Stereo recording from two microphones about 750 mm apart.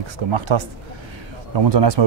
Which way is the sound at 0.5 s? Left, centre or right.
Right.